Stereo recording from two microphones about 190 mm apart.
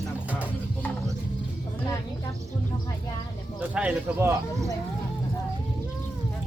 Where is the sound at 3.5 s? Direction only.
10° right (ahead or behind).